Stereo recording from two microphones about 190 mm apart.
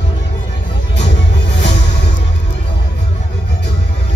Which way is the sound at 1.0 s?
65° left (ahead or behind).